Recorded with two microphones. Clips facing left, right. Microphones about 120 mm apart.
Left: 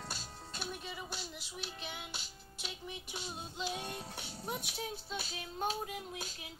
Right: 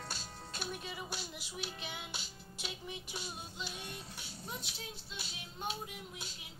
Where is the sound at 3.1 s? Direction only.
25° left (ahead or behind).